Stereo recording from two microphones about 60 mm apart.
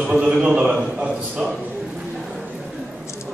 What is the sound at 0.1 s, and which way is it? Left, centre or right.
Speech, centre.